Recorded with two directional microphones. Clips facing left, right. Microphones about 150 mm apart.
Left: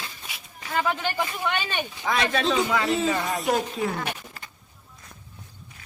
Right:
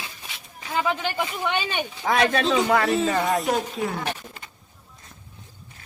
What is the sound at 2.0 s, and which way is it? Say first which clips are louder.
Speech: right 4 dB; 55° right (ahead or behind).